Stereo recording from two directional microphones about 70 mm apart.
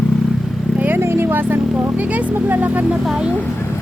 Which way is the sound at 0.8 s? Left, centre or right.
Right.